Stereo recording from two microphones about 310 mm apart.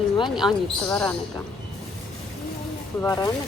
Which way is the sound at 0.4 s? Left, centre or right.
Centre.